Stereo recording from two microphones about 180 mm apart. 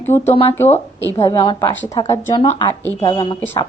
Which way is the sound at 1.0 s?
15° left (ahead or behind).